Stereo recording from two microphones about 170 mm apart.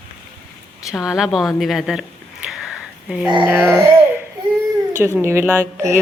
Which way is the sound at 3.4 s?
5° right (ahead or behind).